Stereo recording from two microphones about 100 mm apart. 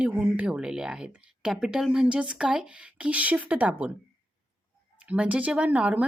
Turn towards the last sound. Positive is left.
turn(degrees=-15)  # may be behind; listen again after turning